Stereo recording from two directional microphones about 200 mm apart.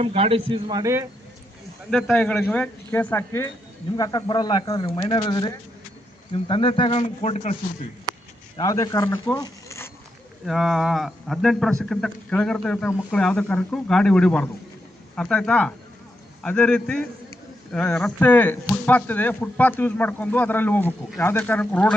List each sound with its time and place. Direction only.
0.0 s a man's voice: 30° right (ahead or behind)
1.9 s speech: 5° left (ahead or behind); by 7.5 s 35° left (ahead or behind)
8.5 s speech: 15° left (ahead or behind)
10.4 s a man's voice: centre (ahead or behind)